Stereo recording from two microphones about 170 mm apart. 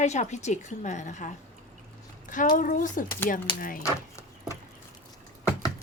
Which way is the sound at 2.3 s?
50° left (ahead or behind).